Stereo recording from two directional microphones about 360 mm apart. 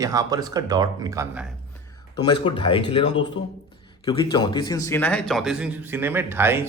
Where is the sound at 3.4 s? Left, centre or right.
Left.